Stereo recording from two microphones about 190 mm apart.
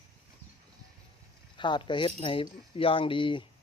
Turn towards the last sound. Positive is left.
turn(degrees=25)  # may be behind; listen again after turning